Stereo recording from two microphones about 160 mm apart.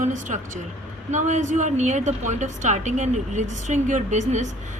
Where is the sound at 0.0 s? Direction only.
55° right (ahead or behind).